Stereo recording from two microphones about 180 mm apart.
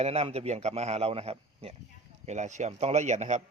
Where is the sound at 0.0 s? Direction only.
35° right (ahead or behind).